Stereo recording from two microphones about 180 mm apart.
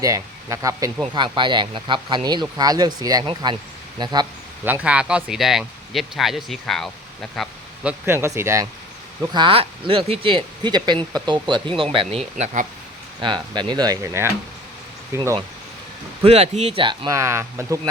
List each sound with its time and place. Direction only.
0.0 s speech: 20° right (ahead or behind)
4.6 s speech: 10° right (ahead or behind)
7.9 s speech: 15° right (ahead or behind); by 12.6 s 35° right (ahead or behind)
13.1 s speech: 25° right (ahead or behind)
16.2 s speech: 35° right (ahead or behind); by 17.7 s 15° right (ahead or behind)